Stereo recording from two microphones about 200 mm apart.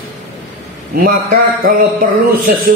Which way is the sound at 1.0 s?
45° right (ahead or behind).